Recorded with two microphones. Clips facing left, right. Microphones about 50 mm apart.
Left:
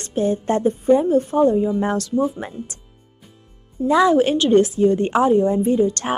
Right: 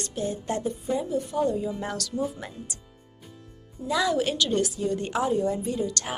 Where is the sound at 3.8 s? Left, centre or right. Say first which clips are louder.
Left 10 dB; left.